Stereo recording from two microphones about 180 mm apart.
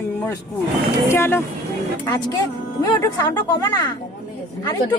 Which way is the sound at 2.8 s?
20° left (ahead or behind).